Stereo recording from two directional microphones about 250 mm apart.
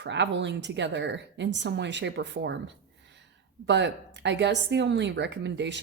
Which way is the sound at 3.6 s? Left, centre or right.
Right.